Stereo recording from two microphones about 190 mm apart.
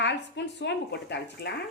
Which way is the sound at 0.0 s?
65° left (ahead or behind).